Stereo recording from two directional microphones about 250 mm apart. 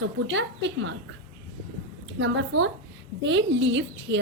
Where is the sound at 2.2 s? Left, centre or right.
Right.